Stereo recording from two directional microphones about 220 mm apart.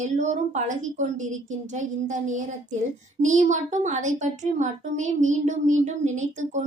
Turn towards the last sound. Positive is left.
turn(degrees=-30)  # may be behind; listen again after turning